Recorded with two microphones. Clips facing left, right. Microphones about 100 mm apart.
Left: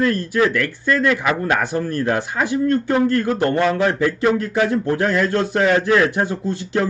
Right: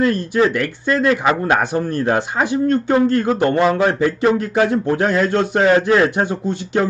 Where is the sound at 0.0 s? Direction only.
25° right (ahead or behind).